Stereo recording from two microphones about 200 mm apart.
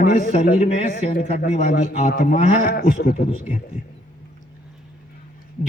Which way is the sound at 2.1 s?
45° left (ahead or behind).